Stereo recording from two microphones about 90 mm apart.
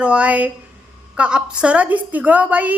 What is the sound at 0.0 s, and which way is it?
A woman's voice, 15° right (ahead or behind).